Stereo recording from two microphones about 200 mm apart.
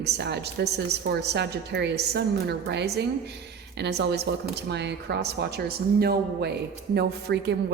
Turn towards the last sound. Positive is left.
turn(degrees=-55)  # may be behind; listen again after turning